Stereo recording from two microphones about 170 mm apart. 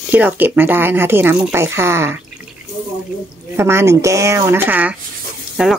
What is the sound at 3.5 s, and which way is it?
Speech, 15° right (ahead or behind).